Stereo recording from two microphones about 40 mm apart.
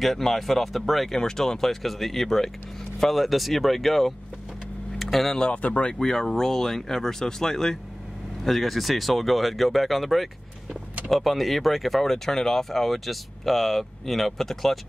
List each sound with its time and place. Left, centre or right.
0.0 s speech: centre
4.9 s vehicle: centre
5.5 s speech: left
5.9 s speech: centre